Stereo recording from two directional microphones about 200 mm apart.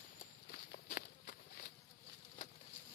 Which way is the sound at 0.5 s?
50° left (ahead or behind).